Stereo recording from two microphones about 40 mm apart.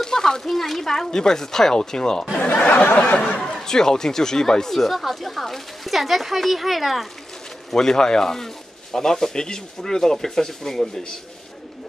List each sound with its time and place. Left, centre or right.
0.0 s speech: centre
2.3 s speech: left
3.4 s speech: centre
7.7 s speech: centre